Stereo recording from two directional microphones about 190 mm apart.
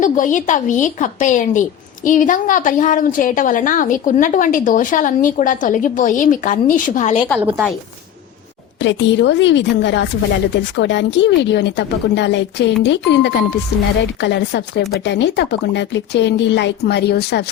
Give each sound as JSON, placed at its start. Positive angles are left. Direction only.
{"t": 0.0, "sound": "a woman's voice", "side_deg": 40}
{"t": 7.3, "sound": "a woman's voice", "side_deg": -5}
{"t": 8.8, "sound": "a woman's voice", "side_deg": 75}